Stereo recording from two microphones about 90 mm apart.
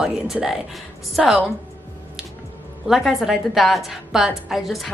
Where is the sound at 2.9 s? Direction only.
Centre (ahead or behind).